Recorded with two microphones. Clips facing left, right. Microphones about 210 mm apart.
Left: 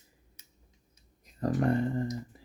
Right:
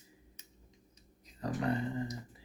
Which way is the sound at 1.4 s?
50° left (ahead or behind).